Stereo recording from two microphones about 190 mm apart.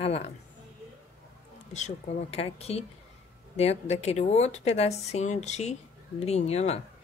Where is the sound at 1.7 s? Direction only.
35° left (ahead or behind).